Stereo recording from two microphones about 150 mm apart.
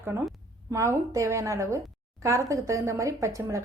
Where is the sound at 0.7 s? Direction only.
20° right (ahead or behind).